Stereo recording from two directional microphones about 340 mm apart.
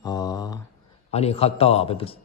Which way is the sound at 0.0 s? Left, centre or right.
Centre.